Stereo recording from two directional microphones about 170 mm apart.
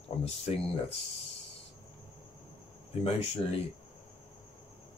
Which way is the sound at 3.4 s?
30° left (ahead or behind).